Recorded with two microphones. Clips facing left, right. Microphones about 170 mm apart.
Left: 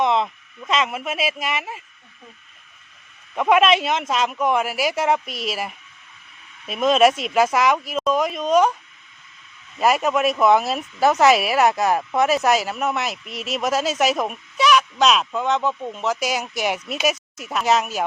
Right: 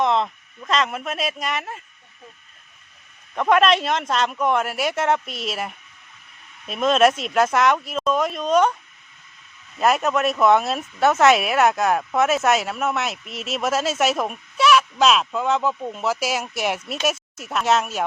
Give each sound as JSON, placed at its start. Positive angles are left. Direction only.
{"t": 0.0, "sound": "speech", "side_deg": 0}
{"t": 3.3, "sound": "speech", "side_deg": 5}
{"t": 9.7, "sound": "speech", "side_deg": 0}